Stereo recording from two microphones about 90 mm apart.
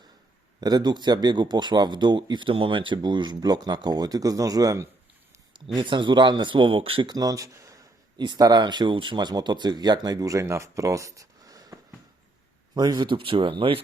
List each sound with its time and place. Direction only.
0.6 s speech: 50° right (ahead or behind)
5.7 s speech: 60° right (ahead or behind); by 7.1 s 90° right
7.1 s speech: 45° right (ahead or behind)
8.2 s speech: 50° right (ahead or behind); by 13.8 s 80° right